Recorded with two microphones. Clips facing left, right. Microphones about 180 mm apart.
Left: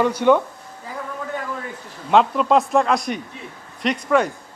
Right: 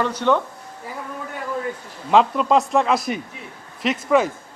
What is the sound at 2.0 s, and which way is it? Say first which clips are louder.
Speech: even; centre (ahead or behind).